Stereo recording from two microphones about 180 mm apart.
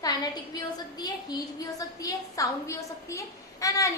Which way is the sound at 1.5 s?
20° left (ahead or behind).